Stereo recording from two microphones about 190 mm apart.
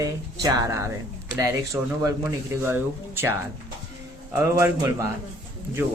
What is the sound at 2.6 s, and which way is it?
Speech, 10° right (ahead or behind).